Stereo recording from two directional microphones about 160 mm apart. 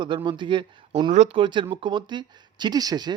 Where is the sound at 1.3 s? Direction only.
30° right (ahead or behind).